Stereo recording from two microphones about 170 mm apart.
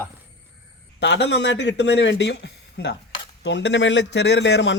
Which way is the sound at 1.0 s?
90° left.